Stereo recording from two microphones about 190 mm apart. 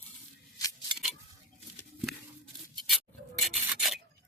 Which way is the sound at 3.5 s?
Centre (ahead or behind).